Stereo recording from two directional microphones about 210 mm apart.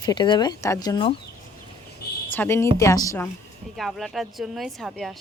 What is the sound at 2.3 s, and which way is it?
Speech, 10° left (ahead or behind).